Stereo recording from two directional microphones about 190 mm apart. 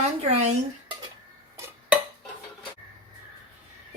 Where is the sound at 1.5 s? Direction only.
15° right (ahead or behind).